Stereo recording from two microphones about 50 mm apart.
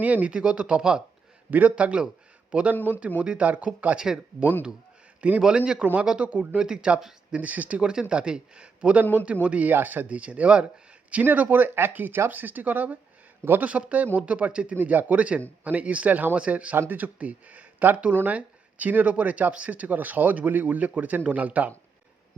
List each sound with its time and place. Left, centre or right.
0.0 s speech: right
1.5 s a man's voice: right
1.7 s a man's voice: right
3.9 s speech: centre
5.4 s speech: centre
5.8 s speech: right
7.3 s speech: right
7.8 s speech: centre
11.1 s speech: right